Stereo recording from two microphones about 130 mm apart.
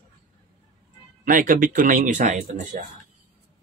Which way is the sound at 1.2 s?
90° right.